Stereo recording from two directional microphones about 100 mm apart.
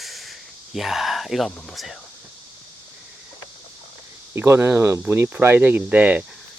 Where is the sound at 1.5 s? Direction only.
5° left (ahead or behind).